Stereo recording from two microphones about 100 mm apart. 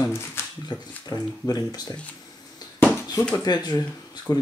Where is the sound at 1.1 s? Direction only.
40° left (ahead or behind).